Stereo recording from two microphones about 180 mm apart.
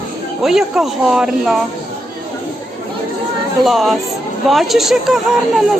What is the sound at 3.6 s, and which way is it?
A woman's voice, centre (ahead or behind).